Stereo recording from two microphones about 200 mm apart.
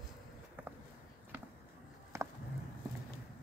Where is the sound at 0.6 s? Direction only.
10° right (ahead or behind).